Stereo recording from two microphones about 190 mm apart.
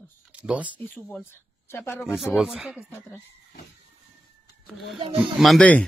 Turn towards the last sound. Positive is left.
turn(degrees=5)  # may be behind; listen again after turning